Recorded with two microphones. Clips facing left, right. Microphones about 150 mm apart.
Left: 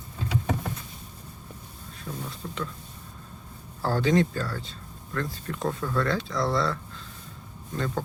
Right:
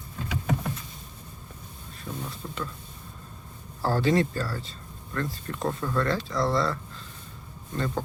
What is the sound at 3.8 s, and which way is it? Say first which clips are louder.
Speech: even; centre (ahead or behind).